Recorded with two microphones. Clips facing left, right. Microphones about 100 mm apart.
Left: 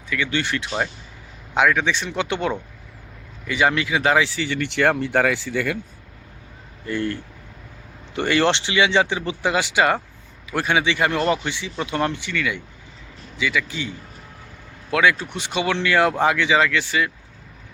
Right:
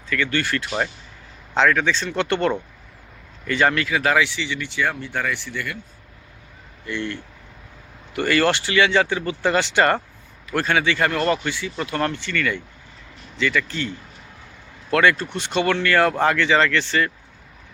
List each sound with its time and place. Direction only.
0.1 s speech: 15° left (ahead or behind)
4.3 s speech: 45° left (ahead or behind)
4.6 s speech: 70° left (ahead or behind); by 5.3 s 90° left
6.8 s speech: 40° left (ahead or behind)
8.1 s speech: 20° left (ahead or behind)